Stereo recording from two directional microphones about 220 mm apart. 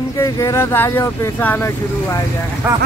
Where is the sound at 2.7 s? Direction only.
10° right (ahead or behind).